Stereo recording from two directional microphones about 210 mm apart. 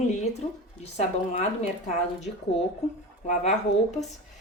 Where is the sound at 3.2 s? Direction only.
35° left (ahead or behind).